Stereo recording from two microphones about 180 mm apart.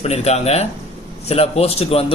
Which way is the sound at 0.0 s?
35° left (ahead or behind).